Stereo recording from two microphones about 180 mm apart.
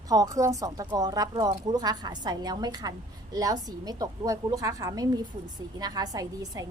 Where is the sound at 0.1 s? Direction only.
20° right (ahead or behind).